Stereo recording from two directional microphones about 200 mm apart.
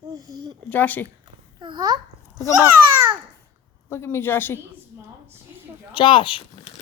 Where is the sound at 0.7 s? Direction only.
10° left (ahead or behind).